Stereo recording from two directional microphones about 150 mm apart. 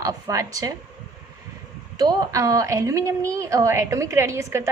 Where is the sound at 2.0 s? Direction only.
25° right (ahead or behind).